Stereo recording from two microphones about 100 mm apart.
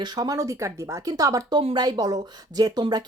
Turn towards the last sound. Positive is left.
turn(degrees=-45)  # may be behind; listen again after turning